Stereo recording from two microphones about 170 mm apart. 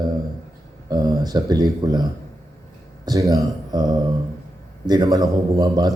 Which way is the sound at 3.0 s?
20° right (ahead or behind).